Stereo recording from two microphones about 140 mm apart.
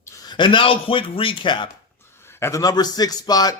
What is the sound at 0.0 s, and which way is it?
A man's voice, 30° left (ahead or behind).